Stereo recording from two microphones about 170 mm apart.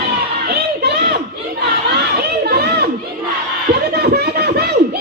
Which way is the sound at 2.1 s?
65° right (ahead or behind).